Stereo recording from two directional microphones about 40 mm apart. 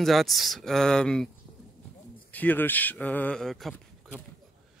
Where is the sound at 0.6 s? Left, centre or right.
Centre.